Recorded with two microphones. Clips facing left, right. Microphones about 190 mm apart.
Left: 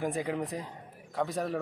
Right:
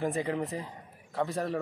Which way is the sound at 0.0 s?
Centre (ahead or behind).